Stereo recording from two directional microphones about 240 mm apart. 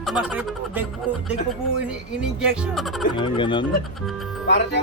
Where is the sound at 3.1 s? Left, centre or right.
Centre.